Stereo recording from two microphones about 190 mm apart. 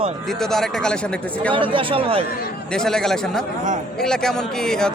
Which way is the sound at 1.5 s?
25° right (ahead or behind).